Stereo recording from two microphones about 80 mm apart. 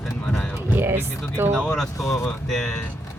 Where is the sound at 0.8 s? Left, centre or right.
Right.